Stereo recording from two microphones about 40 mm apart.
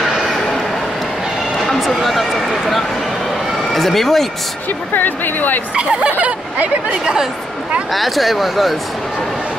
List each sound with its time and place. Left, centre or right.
0.1 s a sound: centre
1.8 s speech: centre
3.7 s speech: centre
4.9 s speech: left
5.8 s speech: right
7.9 s speech: centre